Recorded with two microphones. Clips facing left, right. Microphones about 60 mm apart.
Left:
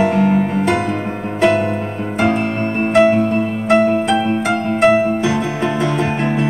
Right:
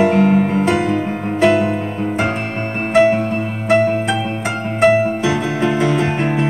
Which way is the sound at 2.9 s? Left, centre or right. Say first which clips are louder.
Left 1 dB; centre.